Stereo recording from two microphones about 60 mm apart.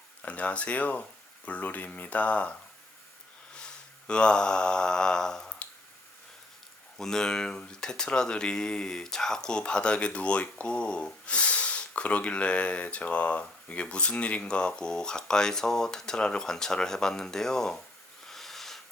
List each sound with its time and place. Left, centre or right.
0.2 s speech: left
3.5 s mantra: centre
7.0 s speech: centre
18.3 s a sound: centre